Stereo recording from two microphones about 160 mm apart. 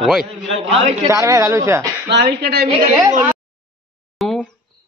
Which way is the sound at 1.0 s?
20° right (ahead or behind).